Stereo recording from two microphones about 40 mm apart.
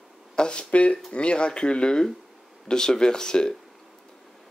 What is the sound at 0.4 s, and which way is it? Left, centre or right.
Speech, left.